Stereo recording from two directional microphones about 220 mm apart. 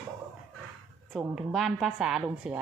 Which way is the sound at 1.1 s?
Centre (ahead or behind).